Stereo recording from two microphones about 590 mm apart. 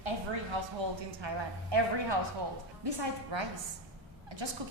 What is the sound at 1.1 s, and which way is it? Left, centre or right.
Speech, right.